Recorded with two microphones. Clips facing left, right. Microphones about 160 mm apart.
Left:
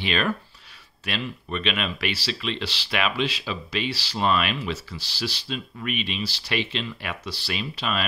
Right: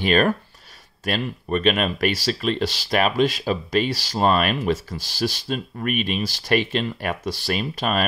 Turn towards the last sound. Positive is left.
turn(degrees=-50)  # may be behind; listen again after turning